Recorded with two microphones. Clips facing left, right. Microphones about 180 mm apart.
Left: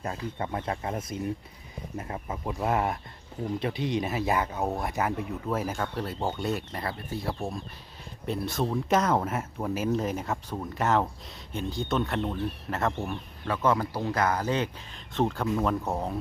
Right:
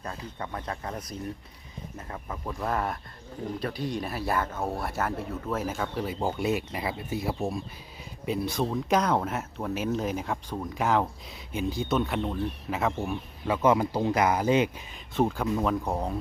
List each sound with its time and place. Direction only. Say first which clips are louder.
0.0 s speech: left 4 dB; 25° left (ahead or behind)
2.0 s speech: left 1 dB; 20° left (ahead or behind)
5.7 s speech: right 1 dB; centre (ahead or behind)
13.4 s speech: right 3 dB; 15° right (ahead or behind); by 16.1 s 5° left (ahead or behind)